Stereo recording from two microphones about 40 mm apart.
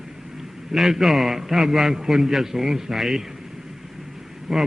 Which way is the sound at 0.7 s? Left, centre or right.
Centre.